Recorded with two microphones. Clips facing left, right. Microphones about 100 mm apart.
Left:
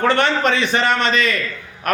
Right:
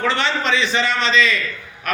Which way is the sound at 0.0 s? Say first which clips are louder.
Left 4 dB; 50° left (ahead or behind).